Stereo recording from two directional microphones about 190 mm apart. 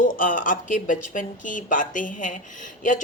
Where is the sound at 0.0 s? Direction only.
45° left (ahead or behind).